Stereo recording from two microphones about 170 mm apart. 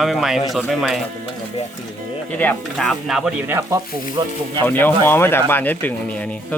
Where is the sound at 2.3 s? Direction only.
10° left (ahead or behind).